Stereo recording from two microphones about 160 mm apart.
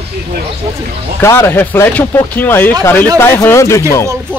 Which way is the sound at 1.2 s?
15° left (ahead or behind).